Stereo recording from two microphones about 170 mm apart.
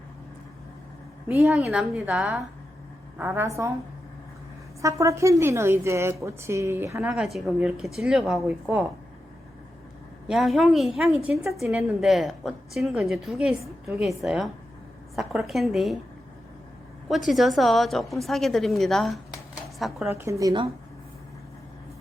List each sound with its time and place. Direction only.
1.3 s a woman's voice: 5° right (ahead or behind)
4.8 s a woman's voice: 20° right (ahead or behind)
7.1 s a woman's voice: centre (ahead or behind)
10.2 s a woman's voice: centre (ahead or behind)
17.3 s a woman's voice: centre (ahead or behind)
20.4 s speech: 30° right (ahead or behind)